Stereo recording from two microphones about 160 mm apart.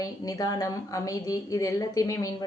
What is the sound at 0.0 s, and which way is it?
A woman's voice, 20° left (ahead or behind).